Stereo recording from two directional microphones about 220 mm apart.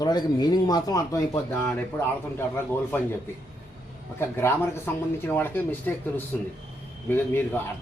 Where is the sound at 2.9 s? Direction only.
10° left (ahead or behind).